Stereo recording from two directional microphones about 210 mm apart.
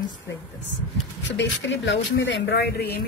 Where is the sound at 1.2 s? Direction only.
60° left (ahead or behind).